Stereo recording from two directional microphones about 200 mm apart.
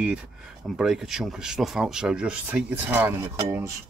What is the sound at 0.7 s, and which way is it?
Speech, centre (ahead or behind).